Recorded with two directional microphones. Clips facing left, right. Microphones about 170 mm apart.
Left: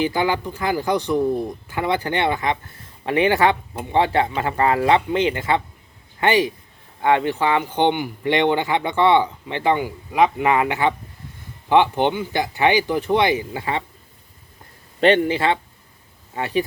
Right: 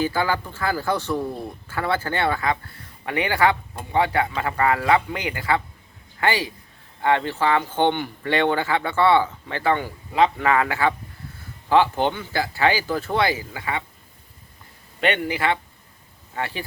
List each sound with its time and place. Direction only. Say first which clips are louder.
0.0 s speech: left 2 dB; 20° left (ahead or behind)
15.0 s speech: left 6 dB; 30° left (ahead or behind)